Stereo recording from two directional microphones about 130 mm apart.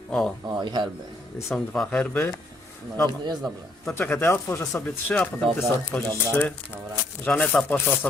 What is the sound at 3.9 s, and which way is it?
Speech, 15° left (ahead or behind).